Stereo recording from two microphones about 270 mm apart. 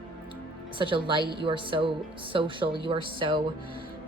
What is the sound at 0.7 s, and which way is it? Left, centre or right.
A woman's voice, centre.